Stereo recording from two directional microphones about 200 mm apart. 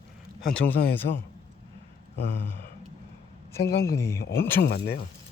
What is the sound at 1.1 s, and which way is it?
Speech, 55° left (ahead or behind).